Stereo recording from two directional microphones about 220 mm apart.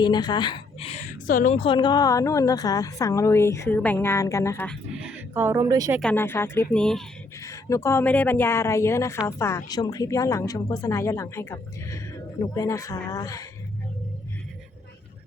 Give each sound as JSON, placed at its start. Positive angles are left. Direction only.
{"t": 0.0, "sound": "a woman's voice", "side_deg": 20}
{"t": 4.9, "sound": "a woman's voice", "side_deg": -5}
{"t": 6.0, "sound": "a woman's voice", "side_deg": 5}
{"t": 7.3, "sound": "a woman's voice", "side_deg": 15}